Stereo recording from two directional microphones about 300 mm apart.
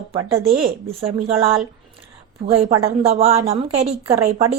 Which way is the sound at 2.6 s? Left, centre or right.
Right.